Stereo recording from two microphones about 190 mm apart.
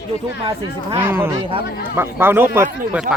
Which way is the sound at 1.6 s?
55° left (ahead or behind).